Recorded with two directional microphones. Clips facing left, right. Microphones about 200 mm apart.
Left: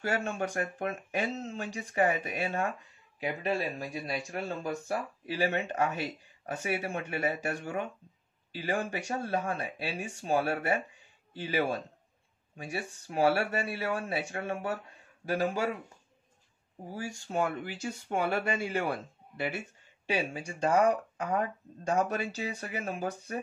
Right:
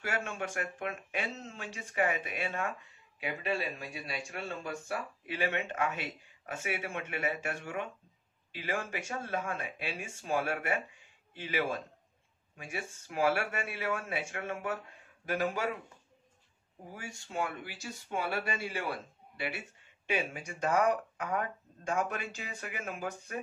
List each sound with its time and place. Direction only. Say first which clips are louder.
0.0 s speech: left 5 dB; 35° left (ahead or behind)
17.3 s speech: left 5 dB; 50° left (ahead or behind)
20.1 s speech: left 2 dB; 30° left (ahead or behind)